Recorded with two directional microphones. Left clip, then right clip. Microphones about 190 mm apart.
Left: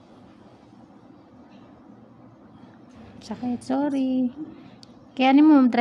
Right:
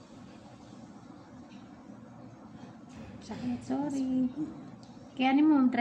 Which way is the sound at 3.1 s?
70° left (ahead or behind).